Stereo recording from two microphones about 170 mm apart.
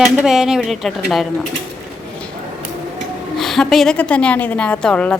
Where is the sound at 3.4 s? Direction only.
Centre (ahead or behind).